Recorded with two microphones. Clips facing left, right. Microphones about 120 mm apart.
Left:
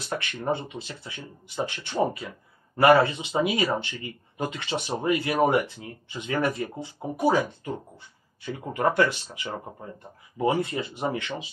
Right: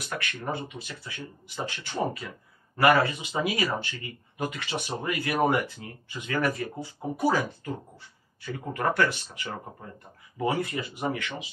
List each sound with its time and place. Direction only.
0.0 s speech: 25° left (ahead or behind)